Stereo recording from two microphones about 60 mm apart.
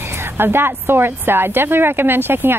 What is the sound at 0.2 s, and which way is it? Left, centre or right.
A woman's voice, right.